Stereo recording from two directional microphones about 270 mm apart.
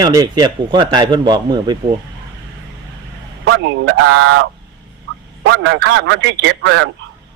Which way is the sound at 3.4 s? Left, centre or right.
Right.